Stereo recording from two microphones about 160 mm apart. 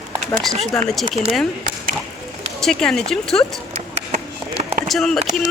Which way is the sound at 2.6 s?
5° left (ahead or behind).